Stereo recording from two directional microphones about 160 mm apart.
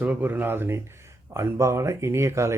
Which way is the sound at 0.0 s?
10° right (ahead or behind).